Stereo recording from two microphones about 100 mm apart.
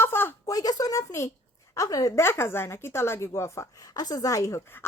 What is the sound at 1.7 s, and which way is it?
Speech, 35° left (ahead or behind).